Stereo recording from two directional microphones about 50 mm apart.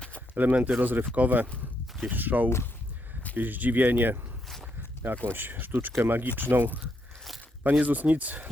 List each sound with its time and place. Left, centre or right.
0.3 s speech: right
5.3 s speech: right
7.6 s speech: right